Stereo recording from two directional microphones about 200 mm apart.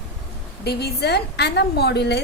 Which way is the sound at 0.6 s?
55° left (ahead or behind).